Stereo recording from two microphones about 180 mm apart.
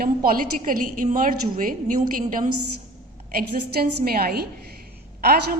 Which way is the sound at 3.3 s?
55° right (ahead or behind).